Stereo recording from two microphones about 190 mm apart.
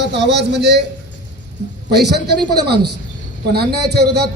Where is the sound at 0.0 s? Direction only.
65° right (ahead or behind).